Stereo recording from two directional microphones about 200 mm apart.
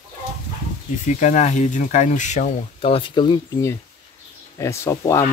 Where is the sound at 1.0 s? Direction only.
35° left (ahead or behind).